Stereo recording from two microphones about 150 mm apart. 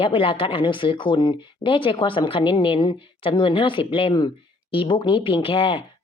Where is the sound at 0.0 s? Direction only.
35° left (ahead or behind).